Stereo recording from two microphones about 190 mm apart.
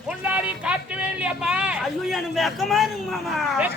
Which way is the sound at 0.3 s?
5° right (ahead or behind).